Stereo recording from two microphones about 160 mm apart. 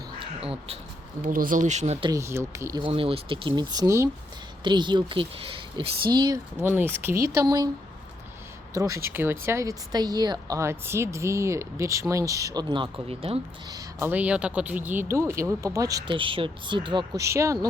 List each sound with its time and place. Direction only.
0.2 s crow: 35° right (ahead or behind)
1.2 s speech: 60° right (ahead or behind); by 2.0 s 45° right (ahead or behind)
2.0 s speech: 20° right (ahead or behind)
2.8 s speech: 35° right (ahead or behind); by 4.1 s 20° right (ahead or behind)
4.6 s speech: 30° right (ahead or behind)
6.6 s speech: 15° right (ahead or behind)
8.7 s speech: 20° right (ahead or behind); by 13.4 s 35° right (ahead or behind)
13.7 s speech: 20° right (ahead or behind)
14.1 s speech: 10° right (ahead or behind); by 17.2 s 30° right (ahead or behind)
17.2 s speech: 20° right (ahead or behind)